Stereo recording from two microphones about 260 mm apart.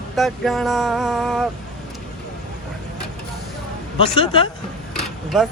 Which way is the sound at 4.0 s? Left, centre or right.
Left.